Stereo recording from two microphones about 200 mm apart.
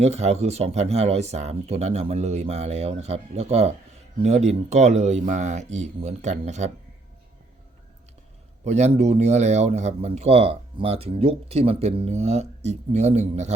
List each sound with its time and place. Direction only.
0.0 s speech: 35° right (ahead or behind)
8.6 s speech: 35° right (ahead or behind)